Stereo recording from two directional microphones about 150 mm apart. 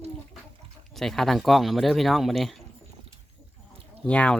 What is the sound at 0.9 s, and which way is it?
Speech, centre (ahead or behind).